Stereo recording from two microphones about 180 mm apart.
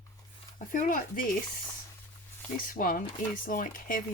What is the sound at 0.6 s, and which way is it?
Speech, 45° left (ahead or behind).